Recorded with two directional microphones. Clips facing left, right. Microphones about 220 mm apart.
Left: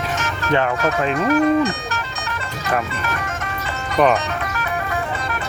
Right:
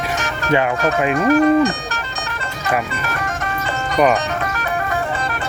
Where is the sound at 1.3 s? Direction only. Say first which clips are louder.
Right 3 dB; 35° right (ahead or behind).